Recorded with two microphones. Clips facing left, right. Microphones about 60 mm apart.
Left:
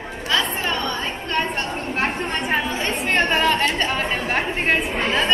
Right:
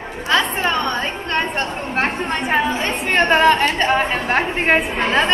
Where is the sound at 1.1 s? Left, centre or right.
Right.